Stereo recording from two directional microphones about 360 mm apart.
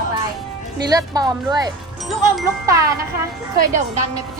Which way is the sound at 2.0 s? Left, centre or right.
Centre.